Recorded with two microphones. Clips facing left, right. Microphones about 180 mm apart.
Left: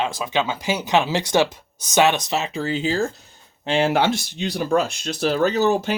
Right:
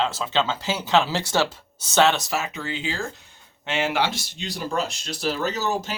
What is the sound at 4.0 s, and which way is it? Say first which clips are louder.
Speech: left 5 dB; 55° left (ahead or behind).